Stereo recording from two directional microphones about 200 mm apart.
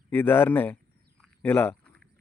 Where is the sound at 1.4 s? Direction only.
10° left (ahead or behind).